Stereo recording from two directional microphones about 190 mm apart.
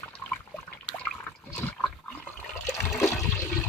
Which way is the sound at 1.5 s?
10° left (ahead or behind).